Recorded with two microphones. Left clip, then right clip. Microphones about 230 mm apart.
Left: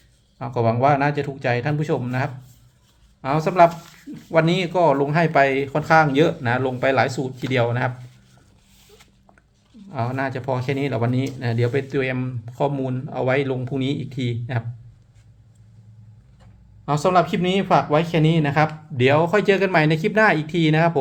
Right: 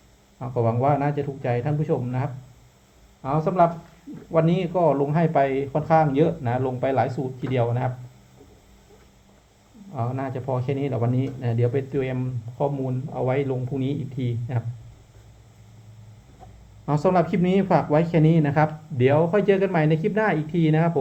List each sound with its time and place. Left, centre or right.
0.3 s speech: centre
9.9 s speech: left
16.8 s speech: centre; by 21.0 s left